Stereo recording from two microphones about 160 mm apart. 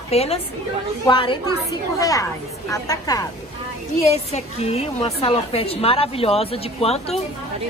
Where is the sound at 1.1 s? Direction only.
30° left (ahead or behind).